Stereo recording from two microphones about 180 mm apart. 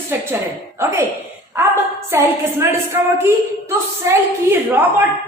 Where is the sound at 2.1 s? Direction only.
15° right (ahead or behind).